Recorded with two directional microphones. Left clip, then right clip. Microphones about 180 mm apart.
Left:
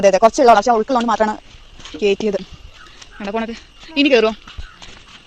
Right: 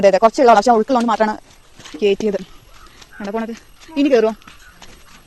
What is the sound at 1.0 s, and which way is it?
Speech, 15° right (ahead or behind).